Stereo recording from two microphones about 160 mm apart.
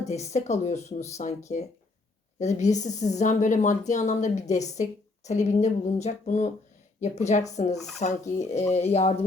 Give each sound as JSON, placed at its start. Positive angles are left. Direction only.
{"t": 0.0, "sound": "speech", "side_deg": 45}
{"t": 8.4, "sound": "speech", "side_deg": 15}
{"t": 8.8, "sound": "speech", "side_deg": 40}